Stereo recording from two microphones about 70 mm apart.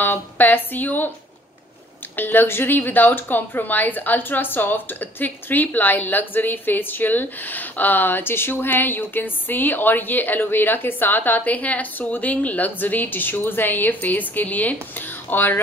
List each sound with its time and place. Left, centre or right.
0.0 s a woman's voice: left
2.1 s a woman's voice: left